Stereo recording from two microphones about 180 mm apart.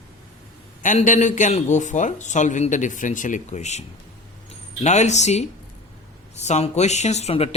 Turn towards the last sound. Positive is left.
turn(degrees=35)  # may be behind; listen again after turning